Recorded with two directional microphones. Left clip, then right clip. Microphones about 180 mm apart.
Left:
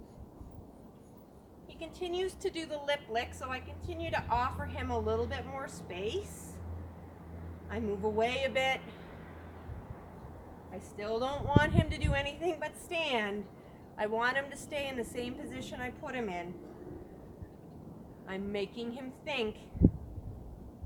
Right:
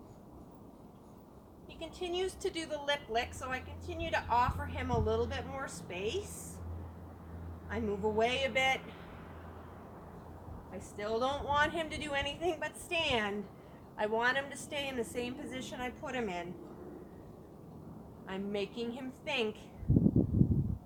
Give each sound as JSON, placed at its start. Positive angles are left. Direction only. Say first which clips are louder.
{"t": 1.8, "sound": "a woman's voice", "louder": "left 1 dB", "side_deg": -5}
{"t": 7.7, "sound": "a woman's voice", "louder": "even", "side_deg": -5}
{"t": 10.7, "sound": "a woman's voice", "louder": "even", "side_deg": -5}
{"t": 18.3, "sound": "a woman's voice", "louder": "left 1 dB", "side_deg": 0}